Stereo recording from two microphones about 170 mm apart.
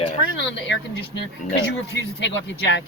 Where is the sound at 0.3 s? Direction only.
90° left.